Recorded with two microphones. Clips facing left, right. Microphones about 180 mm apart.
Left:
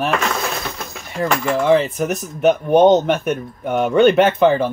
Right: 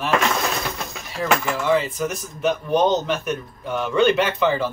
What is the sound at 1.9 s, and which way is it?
Speech, 55° left (ahead or behind).